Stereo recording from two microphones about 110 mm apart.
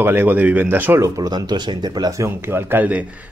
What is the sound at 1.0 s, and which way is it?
Speech, 30° right (ahead or behind).